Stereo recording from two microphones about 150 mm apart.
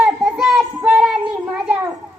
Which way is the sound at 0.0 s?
5° right (ahead or behind).